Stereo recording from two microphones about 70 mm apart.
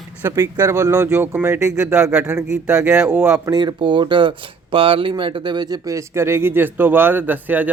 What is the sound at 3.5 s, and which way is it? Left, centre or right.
Speech, right.